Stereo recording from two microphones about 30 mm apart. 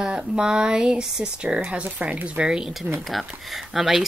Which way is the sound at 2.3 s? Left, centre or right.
Right.